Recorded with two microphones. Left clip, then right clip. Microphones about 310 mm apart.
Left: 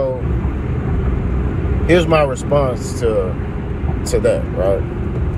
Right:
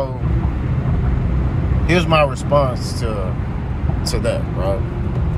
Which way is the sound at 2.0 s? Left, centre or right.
Centre.